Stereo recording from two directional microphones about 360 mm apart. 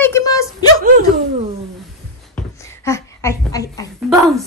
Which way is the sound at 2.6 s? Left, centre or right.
Centre.